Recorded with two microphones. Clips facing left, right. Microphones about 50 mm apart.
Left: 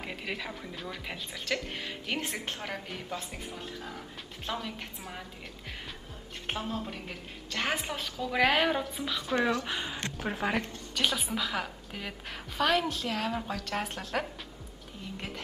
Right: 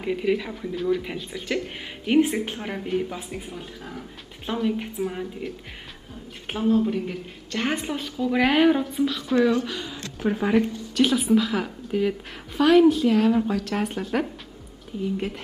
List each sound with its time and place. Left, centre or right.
0.0 s a woman's voice: centre
9.7 s speech: left
10.3 s a woman's voice: centre